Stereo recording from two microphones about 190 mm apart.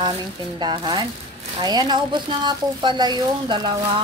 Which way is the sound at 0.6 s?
25° right (ahead or behind).